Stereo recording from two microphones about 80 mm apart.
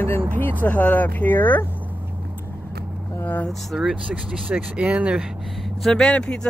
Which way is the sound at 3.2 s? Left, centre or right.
Left.